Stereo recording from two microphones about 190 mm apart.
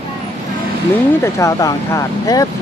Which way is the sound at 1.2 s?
15° left (ahead or behind).